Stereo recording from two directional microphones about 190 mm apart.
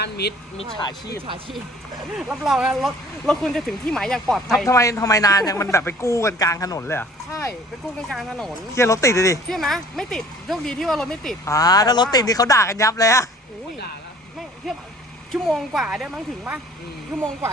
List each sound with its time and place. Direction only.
0.0 s speech: 60° left (ahead or behind)
0.8 s speech: 20° left (ahead or behind)
2.1 s speech: 5° right (ahead or behind)
4.6 s a man's voice: 15° left (ahead or behind)
8.1 s speech: centre (ahead or behind)
8.7 s a man's voice: 15° left (ahead or behind)
9.5 s speech: centre (ahead or behind)
11.4 s a man's voice: 20° left (ahead or behind)
15.3 s speech: centre (ahead or behind)